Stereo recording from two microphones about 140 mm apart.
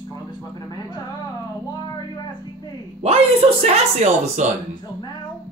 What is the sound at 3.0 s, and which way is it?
Speech, 45° right (ahead or behind).